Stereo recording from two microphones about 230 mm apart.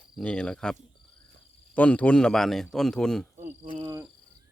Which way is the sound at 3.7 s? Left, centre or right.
Right.